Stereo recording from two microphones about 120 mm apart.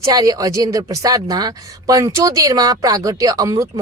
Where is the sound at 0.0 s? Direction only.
30° right (ahead or behind).